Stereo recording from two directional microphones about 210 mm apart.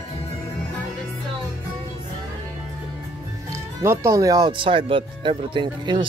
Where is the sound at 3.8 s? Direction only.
15° right (ahead or behind).